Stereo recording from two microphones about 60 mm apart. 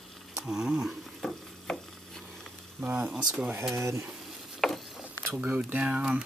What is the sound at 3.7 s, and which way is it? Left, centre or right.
Speech, right.